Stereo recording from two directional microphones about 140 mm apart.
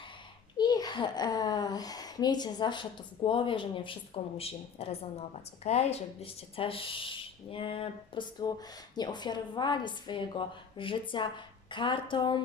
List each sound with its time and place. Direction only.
0.5 s a child's voice: 30° left (ahead or behind)